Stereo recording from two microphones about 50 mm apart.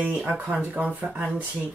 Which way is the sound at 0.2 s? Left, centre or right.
Right.